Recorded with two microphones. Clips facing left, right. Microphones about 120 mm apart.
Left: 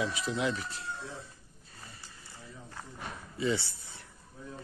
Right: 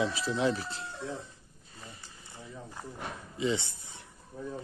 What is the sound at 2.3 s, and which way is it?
Run, 20° right (ahead or behind).